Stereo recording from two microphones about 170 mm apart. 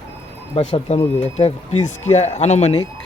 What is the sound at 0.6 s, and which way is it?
Speech, 35° left (ahead or behind).